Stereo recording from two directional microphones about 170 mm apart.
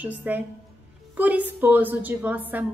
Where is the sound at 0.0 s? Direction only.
10° right (ahead or behind).